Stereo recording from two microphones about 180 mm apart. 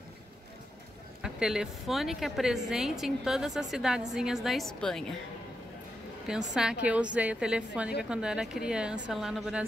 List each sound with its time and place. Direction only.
1.2 s a woman's voice: 5° right (ahead or behind)
6.5 s a woman's voice: 5° right (ahead or behind)